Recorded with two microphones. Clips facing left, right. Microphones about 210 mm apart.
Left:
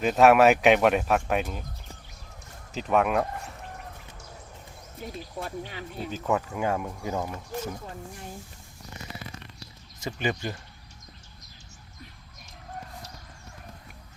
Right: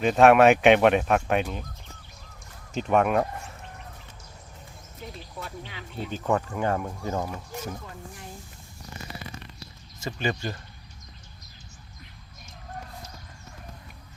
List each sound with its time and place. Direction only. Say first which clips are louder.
0.0 s speech: right 1 dB; 5° left (ahead or behind)
2.7 s speech: right 2 dB; centre (ahead or behind)
5.4 s speech: left 4 dB; 45° left (ahead or behind)
6.1 s speech: right 1 dB; 5° left (ahead or behind)
7.2 s speech: even; 5° right (ahead or behind)
10.0 s speech: even; 15° left (ahead or behind)